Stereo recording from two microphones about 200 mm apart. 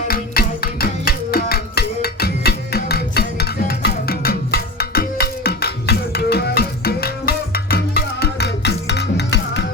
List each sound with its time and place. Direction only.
0.1 s music: 50° left (ahead or behind)